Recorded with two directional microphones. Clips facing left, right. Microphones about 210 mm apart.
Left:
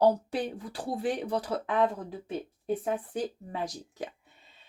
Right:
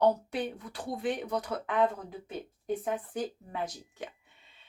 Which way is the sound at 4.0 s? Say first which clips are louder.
Left 4 dB; 35° left (ahead or behind).